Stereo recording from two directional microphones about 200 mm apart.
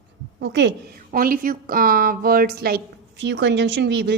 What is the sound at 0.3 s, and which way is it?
A woman's voice, 60° right (ahead or behind).